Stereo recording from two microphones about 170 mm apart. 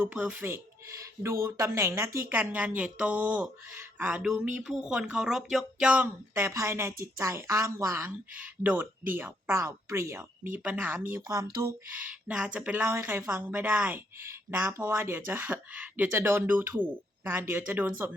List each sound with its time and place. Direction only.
0.1 s speech: 10° right (ahead or behind)